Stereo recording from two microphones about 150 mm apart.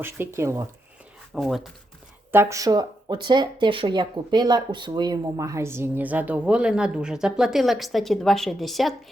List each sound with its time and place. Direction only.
0.0 s speech: 15° right (ahead or behind)
1.3 s speech: centre (ahead or behind)
2.3 s speech: 15° right (ahead or behind); by 9.0 s centre (ahead or behind)